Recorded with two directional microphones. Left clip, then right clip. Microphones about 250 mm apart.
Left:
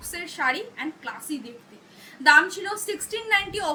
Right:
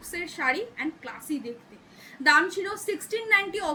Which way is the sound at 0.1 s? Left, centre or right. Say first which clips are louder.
Left 2 dB; centre.